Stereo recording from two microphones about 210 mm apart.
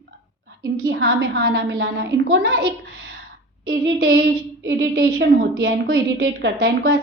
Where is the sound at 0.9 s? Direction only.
70° right (ahead or behind).